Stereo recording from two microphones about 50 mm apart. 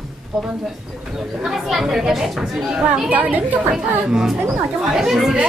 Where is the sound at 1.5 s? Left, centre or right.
Centre.